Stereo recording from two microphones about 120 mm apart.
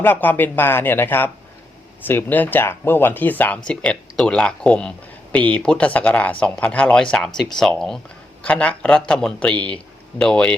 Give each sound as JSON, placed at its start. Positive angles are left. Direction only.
{"t": 0.0, "sound": "a man's voice", "side_deg": 15}